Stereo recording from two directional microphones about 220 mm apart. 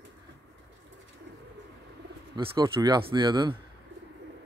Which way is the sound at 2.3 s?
20° right (ahead or behind).